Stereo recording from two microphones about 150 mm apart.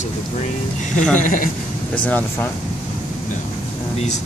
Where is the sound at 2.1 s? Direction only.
10° left (ahead or behind).